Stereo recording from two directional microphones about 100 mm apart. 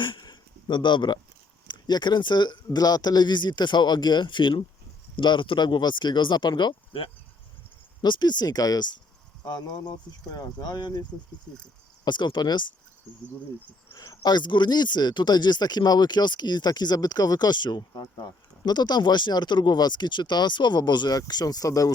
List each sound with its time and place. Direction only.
0.0 s a sound: 50° left (ahead or behind)
1.6 s speech: 45° left (ahead or behind)
12.0 s speech: 50° left (ahead or behind)
13.9 s speech: 35° left (ahead or behind)
14.3 s speech: 50° left (ahead or behind)